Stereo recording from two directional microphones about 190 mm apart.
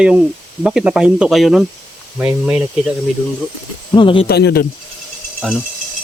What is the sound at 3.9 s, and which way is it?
Speech, 25° left (ahead or behind).